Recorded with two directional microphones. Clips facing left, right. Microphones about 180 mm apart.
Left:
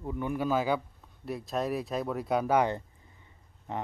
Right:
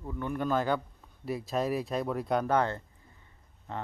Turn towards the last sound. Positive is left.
turn(degrees=15)  # may be behind; listen again after turning